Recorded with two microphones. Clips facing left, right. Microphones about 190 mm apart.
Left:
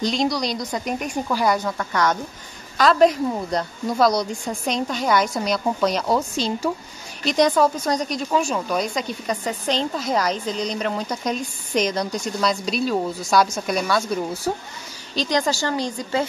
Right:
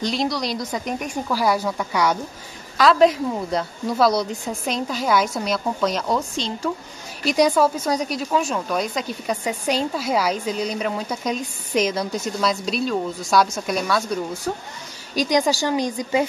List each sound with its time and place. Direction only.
0.1 s a woman's voice: centre (ahead or behind)
7.2 s a woman's voice: 5° right (ahead or behind)
15.1 s speech: 15° right (ahead or behind)